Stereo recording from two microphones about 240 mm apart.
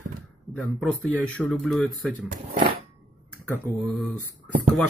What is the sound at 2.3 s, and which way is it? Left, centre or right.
Speech, right.